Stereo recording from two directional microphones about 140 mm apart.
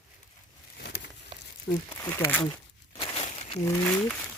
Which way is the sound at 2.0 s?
15° left (ahead or behind).